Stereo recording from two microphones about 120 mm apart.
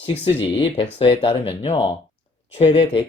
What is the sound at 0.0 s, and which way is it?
Speech, 50° left (ahead or behind).